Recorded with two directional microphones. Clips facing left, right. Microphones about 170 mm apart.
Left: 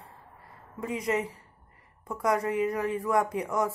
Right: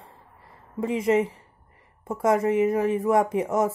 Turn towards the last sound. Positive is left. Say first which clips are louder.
# right 5 dB
turn(degrees=-25)  # may be behind; listen again after turning